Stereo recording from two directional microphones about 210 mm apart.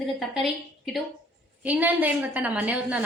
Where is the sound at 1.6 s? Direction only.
5° right (ahead or behind).